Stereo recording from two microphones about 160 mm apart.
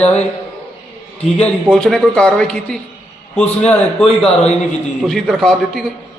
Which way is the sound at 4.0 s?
5° left (ahead or behind).